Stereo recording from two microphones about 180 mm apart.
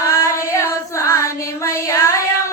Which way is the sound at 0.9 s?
15° left (ahead or behind).